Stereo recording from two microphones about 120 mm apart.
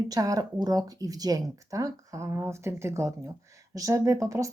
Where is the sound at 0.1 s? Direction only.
30° right (ahead or behind).